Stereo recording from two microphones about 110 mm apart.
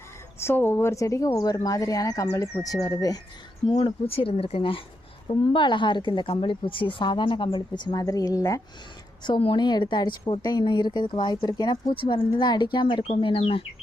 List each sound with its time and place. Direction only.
0.3 s speech: 20° left (ahead or behind)
3.7 s speech: 55° left (ahead or behind)
5.5 s a woman's voice: 45° left (ahead or behind)
8.0 s speech: 35° left (ahead or behind)
9.4 s a woman's voice: 45° left (ahead or behind)